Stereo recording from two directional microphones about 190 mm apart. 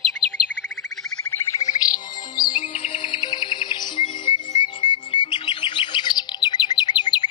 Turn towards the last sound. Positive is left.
turn(degrees=25)  # may be behind; listen again after turning